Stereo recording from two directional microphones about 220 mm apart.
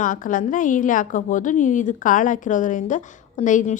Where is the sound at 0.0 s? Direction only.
35° left (ahead or behind).